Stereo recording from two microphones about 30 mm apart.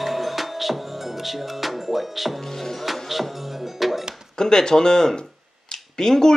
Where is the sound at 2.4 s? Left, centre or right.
Centre.